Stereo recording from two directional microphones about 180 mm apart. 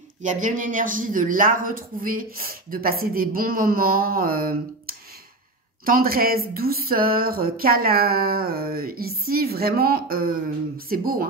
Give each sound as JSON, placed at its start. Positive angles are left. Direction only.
{"t": 0.2, "sound": "speech", "side_deg": -45}
{"t": 5.9, "sound": "speech", "side_deg": -55}